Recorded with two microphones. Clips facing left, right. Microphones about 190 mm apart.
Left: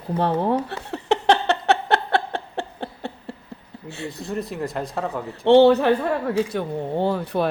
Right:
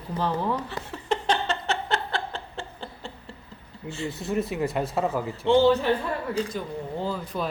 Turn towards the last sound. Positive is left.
turn(degrees=65)  # may be behind; listen again after turning